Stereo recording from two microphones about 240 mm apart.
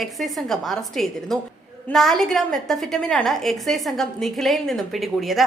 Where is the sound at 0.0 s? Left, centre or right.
Centre.